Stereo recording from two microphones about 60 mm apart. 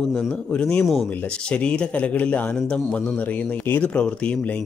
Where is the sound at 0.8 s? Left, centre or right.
Centre.